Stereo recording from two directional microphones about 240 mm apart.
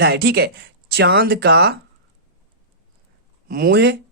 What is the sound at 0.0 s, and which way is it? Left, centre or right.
Speech, right.